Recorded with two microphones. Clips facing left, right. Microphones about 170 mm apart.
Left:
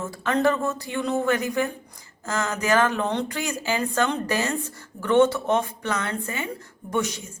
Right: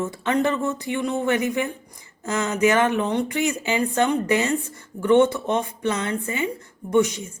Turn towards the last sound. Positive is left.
turn(degrees=-20)  # may be behind; listen again after turning